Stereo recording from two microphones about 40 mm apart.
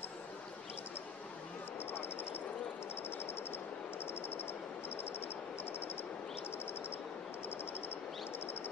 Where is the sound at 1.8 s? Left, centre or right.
Left.